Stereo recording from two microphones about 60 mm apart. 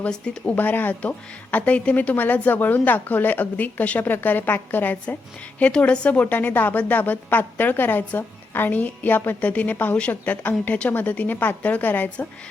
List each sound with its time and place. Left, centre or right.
0.1 s speech: centre
0.5 s a woman's voice: left
5.7 s a woman's voice: centre